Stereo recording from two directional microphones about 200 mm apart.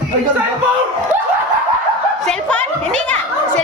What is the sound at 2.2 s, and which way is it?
Speech, 5° left (ahead or behind).